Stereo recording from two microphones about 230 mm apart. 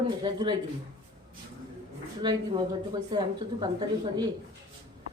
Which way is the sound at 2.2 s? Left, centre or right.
Centre.